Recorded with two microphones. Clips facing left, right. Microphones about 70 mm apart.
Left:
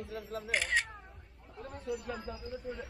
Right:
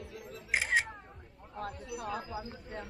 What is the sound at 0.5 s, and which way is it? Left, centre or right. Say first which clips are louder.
Speech: right 2 dB; centre.